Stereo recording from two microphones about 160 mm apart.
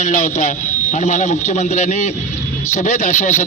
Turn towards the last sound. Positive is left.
turn(degrees=50)  # may be behind; listen again after turning